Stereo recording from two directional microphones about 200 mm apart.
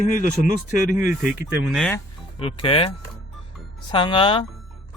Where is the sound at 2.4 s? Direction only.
30° left (ahead or behind).